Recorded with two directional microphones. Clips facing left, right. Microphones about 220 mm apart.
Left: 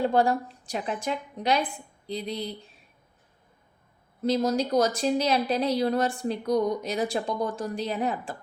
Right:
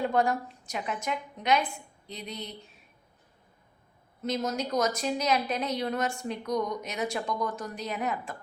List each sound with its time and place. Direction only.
0.0 s a woman's voice: 30° left (ahead or behind)
4.2 s a woman's voice: 30° left (ahead or behind)